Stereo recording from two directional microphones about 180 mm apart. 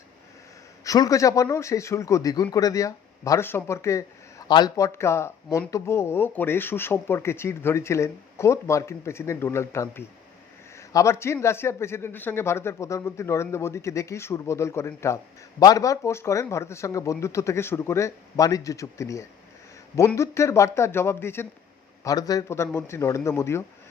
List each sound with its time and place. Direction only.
0.9 s speech: 20° left (ahead or behind)